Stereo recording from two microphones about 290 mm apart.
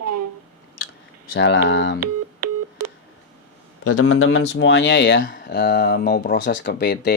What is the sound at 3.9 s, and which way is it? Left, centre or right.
Speech, left.